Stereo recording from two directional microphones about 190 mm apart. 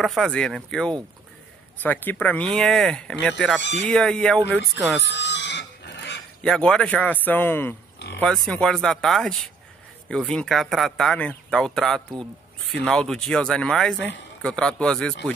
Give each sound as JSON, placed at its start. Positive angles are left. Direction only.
{"t": 0.0, "sound": "speech", "side_deg": 0}
{"t": 5.0, "sound": "a sound", "side_deg": 65}
{"t": 6.4, "sound": "speech", "side_deg": 5}